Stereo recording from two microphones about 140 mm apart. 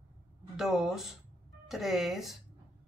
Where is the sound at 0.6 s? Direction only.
5° right (ahead or behind).